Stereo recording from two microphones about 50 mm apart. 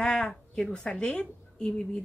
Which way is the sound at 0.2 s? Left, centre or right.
Centre.